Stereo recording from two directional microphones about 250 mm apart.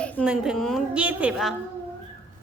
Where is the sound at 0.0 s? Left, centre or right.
Centre.